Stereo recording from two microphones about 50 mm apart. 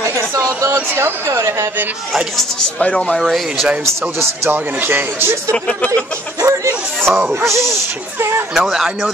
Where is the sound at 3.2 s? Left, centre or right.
Centre.